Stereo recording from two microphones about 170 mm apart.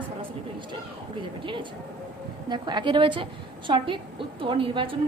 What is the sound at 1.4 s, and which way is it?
A woman's voice, 30° right (ahead or behind).